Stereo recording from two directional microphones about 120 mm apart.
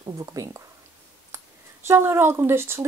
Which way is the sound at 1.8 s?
20° right (ahead or behind).